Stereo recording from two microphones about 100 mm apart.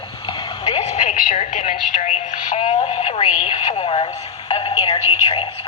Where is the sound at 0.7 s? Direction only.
90° left.